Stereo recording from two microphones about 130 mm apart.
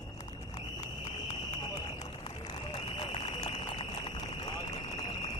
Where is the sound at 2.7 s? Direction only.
45° left (ahead or behind).